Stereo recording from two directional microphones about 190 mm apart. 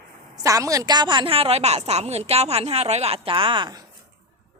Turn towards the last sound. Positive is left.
turn(degrees=-25)  # may be behind; listen again after turning